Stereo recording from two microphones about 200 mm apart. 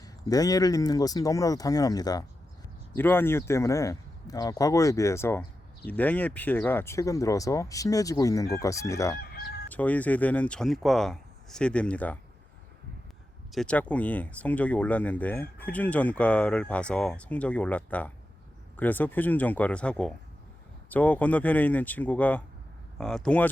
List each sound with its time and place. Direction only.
0.0 s speech: 20° left (ahead or behind)
13.5 s speech: 5° left (ahead or behind)